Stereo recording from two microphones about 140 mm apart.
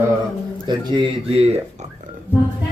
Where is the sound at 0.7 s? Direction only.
35° right (ahead or behind).